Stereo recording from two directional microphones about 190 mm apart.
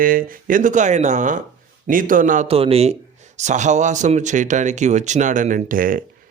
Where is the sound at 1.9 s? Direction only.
45° right (ahead or behind).